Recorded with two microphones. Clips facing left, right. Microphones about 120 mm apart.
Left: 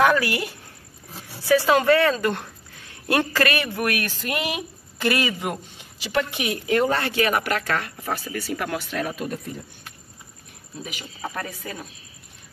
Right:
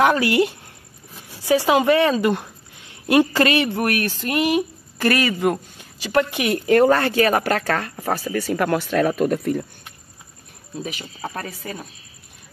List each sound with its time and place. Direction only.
0.0 s a woman's voice: 25° right (ahead or behind); by 9.7 s 65° right (ahead or behind)
10.8 s a woman's voice: 30° right (ahead or behind)